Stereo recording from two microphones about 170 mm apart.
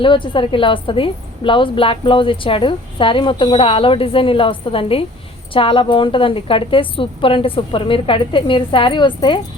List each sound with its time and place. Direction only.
0.0 s a woman's voice: 30° left (ahead or behind)